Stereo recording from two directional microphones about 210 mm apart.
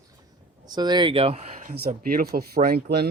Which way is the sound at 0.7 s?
20° right (ahead or behind).